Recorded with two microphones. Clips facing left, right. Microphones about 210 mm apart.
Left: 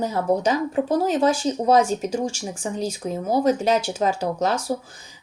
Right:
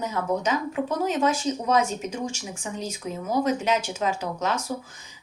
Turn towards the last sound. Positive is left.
turn(degrees=30)  # may be behind; listen again after turning